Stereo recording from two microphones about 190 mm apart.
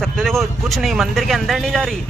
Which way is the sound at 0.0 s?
Centre (ahead or behind).